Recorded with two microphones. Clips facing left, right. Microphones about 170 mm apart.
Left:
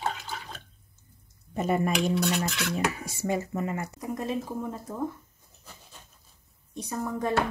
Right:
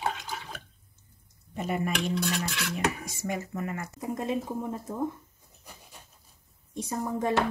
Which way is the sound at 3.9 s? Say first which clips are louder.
Even; 20° right (ahead or behind).